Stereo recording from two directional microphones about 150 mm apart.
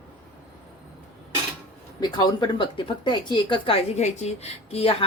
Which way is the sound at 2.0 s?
25° left (ahead or behind).